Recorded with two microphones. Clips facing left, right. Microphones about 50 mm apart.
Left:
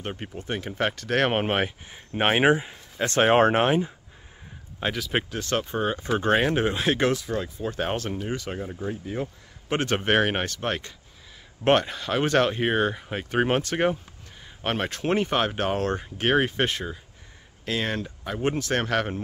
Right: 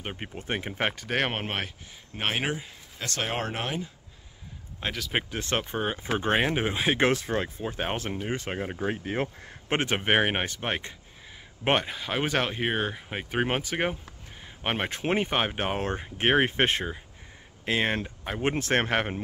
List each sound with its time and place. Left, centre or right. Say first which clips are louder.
0.2 s speech: left 1 dB; right; by 1.3 s centre
1.3 s speech: left 8 dB; centre
1.9 s speech: left 7 dB; left
4.7 s speech: left 3 dB; centre
5.3 s speech: left 2 dB; right; by 7.0 s centre
7.0 s speech: even; right
7.6 s speech: left 3 dB; centre
8.4 s speech: even; right
8.8 s speech: right 2 dB; right
9.7 s speech: left 2 dB; right
11.6 s speech: left 5 dB; centre